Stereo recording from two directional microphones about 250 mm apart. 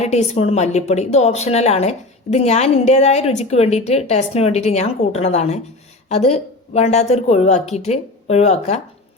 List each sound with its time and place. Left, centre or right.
0.0 s speech: left